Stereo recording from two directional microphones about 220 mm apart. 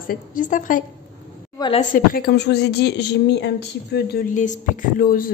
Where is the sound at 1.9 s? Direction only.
40° left (ahead or behind).